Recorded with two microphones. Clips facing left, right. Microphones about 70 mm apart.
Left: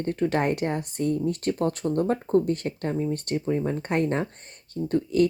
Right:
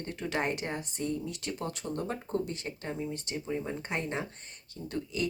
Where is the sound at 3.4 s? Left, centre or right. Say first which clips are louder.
Left 8 dB; left.